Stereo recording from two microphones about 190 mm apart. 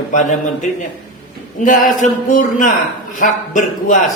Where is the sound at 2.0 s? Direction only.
40° left (ahead or behind).